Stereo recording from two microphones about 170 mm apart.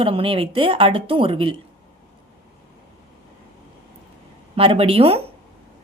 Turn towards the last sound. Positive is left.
turn(degrees=-35)  # may be behind; listen again after turning